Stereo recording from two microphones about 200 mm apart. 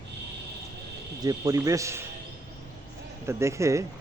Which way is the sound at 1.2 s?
20° right (ahead or behind).